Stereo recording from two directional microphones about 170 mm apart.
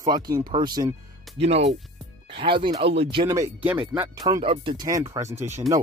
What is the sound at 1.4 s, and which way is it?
Speech, 40° right (ahead or behind).